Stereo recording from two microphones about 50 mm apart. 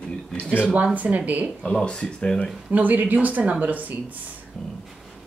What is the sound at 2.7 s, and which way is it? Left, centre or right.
Speech, right.